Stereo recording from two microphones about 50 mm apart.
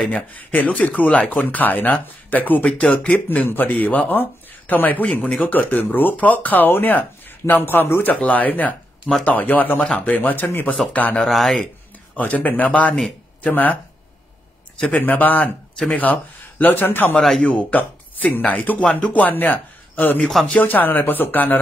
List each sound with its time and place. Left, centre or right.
0.0 s speech: left
1.3 s speech: left
2.8 s speech: left
3.1 s speech: left
8.1 s speech: left
9.8 s speech: left
10.0 s speech: left
11.1 s speech: centre
12.2 s speech: left
14.9 s speech: left
17.1 s speech: centre
17.4 s speech: left